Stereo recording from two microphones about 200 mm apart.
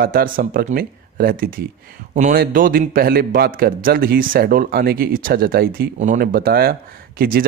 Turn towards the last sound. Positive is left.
turn(degrees=-45)  # may be behind; listen again after turning